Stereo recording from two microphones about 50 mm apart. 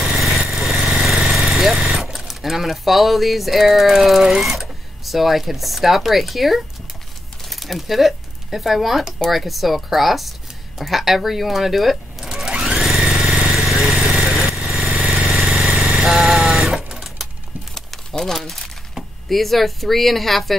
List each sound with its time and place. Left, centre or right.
0.0 s vehicle: centre
1.5 s jackhammer: centre
1.8 s speech: centre
12.4 s sewing machine: centre
13.0 s vehicle: centre
14.6 s vehicle: centre
14.9 s vehicle: right
17.7 s a sound: centre
18.9 s speech: centre